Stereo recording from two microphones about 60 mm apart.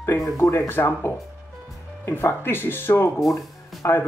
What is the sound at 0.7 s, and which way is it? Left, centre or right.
Speech, left.